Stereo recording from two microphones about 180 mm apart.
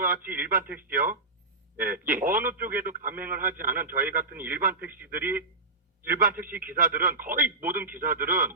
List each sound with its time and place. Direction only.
0.0 s a man's voice: 55° right (ahead or behind)